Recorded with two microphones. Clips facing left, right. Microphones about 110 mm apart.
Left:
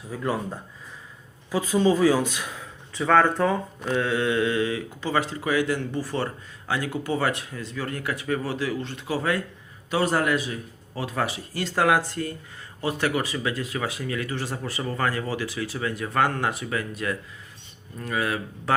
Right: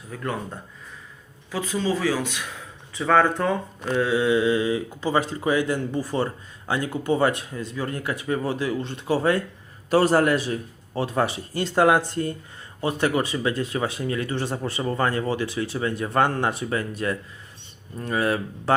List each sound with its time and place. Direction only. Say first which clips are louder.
0.1 s speech: left 2 dB; 10° left (ahead or behind)
1.8 s speech: left 5 dB; 20° left (ahead or behind)
2.9 s speech: even; centre (ahead or behind); by 18.7 s 35° right (ahead or behind)